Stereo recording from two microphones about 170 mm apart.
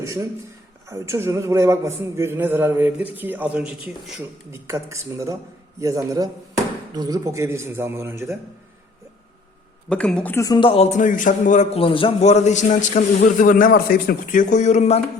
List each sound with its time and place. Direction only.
0.0 s a sound: 20° right (ahead or behind)
0.9 s a man's voice: 15° right (ahead or behind)
4.2 s a man's voice: 15° right (ahead or behind)
9.9 s a man's voice: 5° left (ahead or behind); by 15.0 s 40° left (ahead or behind)